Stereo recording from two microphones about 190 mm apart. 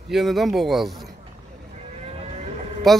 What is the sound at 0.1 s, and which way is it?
Speech, centre (ahead or behind).